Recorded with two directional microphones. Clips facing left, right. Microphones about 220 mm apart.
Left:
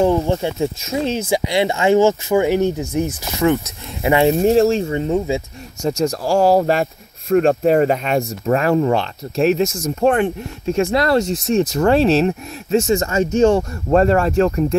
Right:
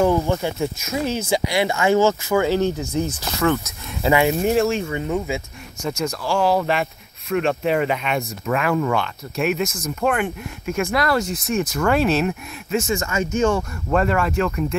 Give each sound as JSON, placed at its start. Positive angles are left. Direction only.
{"t": 0.0, "sound": "speech", "side_deg": 25}
{"t": 5.8, "sound": "speech", "side_deg": 40}